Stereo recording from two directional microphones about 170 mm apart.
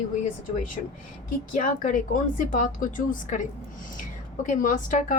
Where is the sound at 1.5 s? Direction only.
50° left (ahead or behind).